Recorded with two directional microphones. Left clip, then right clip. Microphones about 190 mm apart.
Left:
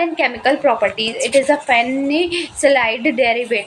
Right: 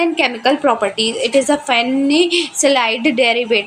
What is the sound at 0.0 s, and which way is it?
A woman's voice, 30° right (ahead or behind).